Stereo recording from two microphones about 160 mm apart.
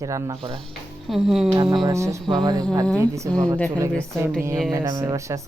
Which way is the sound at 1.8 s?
20° right (ahead or behind).